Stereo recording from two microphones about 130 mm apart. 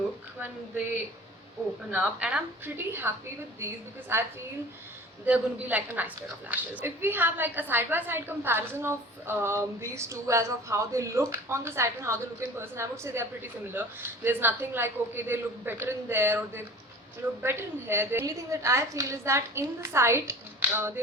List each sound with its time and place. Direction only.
1.9 s a woman's voice: 10° right (ahead or behind)
4.1 s a woman's voice: 20° right (ahead or behind)